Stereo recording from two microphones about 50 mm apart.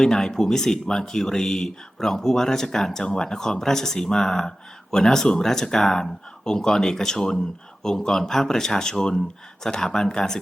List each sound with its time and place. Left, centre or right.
0.0 s speech: centre